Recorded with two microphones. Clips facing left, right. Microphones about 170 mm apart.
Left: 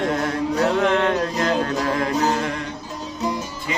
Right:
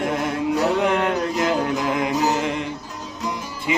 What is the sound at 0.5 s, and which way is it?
Music, 15° right (ahead or behind).